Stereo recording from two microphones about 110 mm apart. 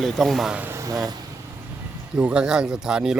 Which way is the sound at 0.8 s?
35° right (ahead or behind).